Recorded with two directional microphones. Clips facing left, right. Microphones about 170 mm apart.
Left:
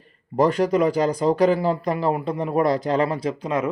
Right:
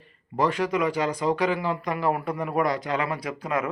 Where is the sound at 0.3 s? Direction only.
40° left (ahead or behind).